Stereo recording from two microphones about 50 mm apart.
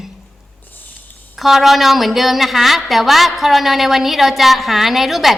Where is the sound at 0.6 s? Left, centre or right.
Left.